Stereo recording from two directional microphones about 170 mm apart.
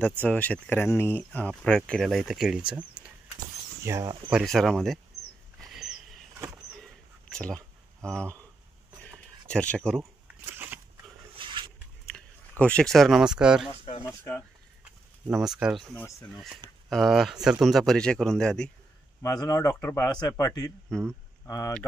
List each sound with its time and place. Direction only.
0.2 s speech: 10° left (ahead or behind)
3.0 s vehicle: 5° right (ahead or behind)
3.8 s speech: 20° right (ahead or behind)
4.3 s speech: centre (ahead or behind)
5.7 s a sound: centre (ahead or behind)
9.5 s speech: 5° left (ahead or behind)
11.3 s a sound: 30° right (ahead or behind)
12.5 s speech: 5° left (ahead or behind)
14.0 s speech: 10° left (ahead or behind)
15.2 s speech: 5° right (ahead or behind)
16.9 s speech: centre (ahead or behind)
19.2 s a man's voice: 20° left (ahead or behind)